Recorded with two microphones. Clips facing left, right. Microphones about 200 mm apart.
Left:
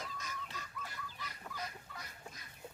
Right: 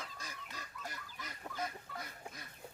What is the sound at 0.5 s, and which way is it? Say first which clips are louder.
Fowl: even; 45° right (ahead or behind).